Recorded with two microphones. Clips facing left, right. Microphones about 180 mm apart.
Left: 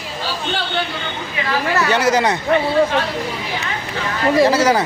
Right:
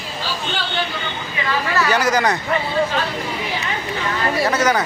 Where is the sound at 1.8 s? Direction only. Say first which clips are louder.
Left 1 dB; 25° left (ahead or behind).